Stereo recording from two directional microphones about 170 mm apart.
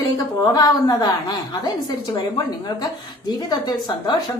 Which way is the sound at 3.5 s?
25° left (ahead or behind).